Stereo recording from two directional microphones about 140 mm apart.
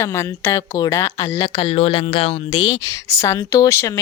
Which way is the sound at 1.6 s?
45° left (ahead or behind).